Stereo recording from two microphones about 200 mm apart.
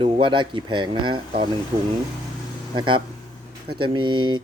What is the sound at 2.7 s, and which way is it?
Speech, 25° right (ahead or behind).